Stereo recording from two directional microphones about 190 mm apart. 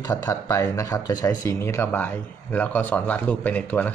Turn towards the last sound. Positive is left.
turn(degrees=10)  # may be behind; listen again after turning